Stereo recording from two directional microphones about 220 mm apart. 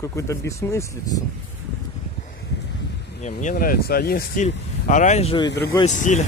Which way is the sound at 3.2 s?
35° left (ahead or behind).